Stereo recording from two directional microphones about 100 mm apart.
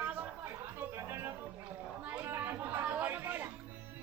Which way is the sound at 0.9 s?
25° right (ahead or behind).